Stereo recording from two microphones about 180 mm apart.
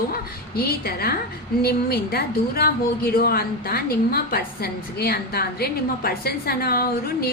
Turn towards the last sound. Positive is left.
turn(degrees=55)  # may be behind; listen again after turning